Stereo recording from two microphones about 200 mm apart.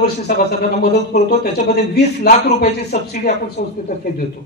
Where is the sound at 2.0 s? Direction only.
55° left (ahead or behind).